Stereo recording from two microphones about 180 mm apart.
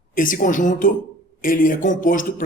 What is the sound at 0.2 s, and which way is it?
Speech, 50° left (ahead or behind).